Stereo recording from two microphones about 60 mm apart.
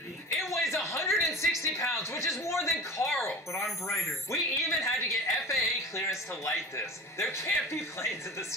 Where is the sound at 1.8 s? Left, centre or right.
Left.